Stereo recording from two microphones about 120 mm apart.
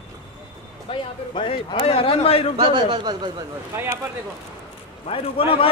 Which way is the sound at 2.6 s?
45° right (ahead or behind).